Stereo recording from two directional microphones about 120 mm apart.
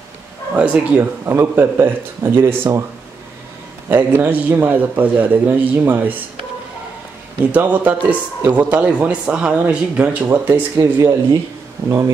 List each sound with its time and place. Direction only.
0.6 s a man's voice: 10° right (ahead or behind)
3.9 s a man's voice: 15° right (ahead or behind)
7.5 s a man's voice: 15° right (ahead or behind)